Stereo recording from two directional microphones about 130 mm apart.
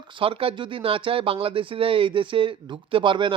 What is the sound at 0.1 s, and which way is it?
Speech, 45° right (ahead or behind).